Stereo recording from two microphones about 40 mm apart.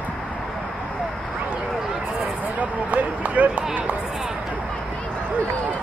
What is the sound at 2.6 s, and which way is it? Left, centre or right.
Run, right.